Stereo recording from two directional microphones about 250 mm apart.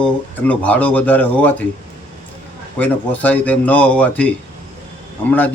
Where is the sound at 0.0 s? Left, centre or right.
Centre.